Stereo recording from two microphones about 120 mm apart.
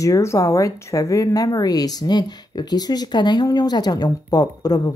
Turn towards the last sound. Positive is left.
turn(degrees=30)  # may be behind; listen again after turning